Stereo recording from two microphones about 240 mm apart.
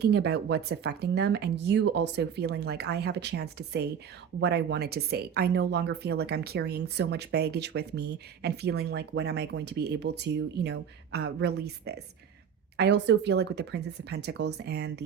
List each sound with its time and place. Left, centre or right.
0.0 s speech: right